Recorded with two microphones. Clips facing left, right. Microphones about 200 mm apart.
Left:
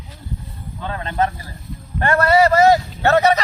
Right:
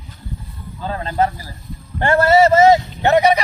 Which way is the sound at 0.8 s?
30° right (ahead or behind).